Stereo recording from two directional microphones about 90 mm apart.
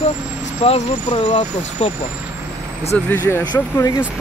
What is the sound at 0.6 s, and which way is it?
Speech, 90° left.